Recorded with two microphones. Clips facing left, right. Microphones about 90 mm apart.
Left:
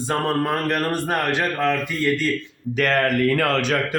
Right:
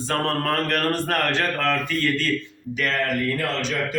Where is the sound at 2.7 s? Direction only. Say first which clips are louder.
Left 5 dB; 50° left (ahead or behind).